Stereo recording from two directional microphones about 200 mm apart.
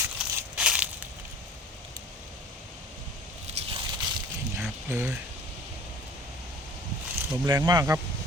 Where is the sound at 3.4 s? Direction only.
30° right (ahead or behind).